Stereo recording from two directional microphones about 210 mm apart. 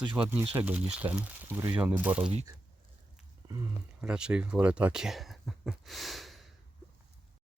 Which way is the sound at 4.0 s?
5° right (ahead or behind).